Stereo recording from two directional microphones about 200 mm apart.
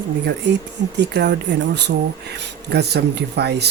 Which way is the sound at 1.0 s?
60° right (ahead or behind).